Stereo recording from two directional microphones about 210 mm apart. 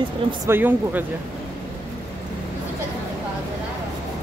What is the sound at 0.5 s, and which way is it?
Speech, 10° right (ahead or behind).